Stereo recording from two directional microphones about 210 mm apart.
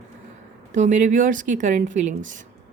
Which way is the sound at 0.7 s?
35° right (ahead or behind).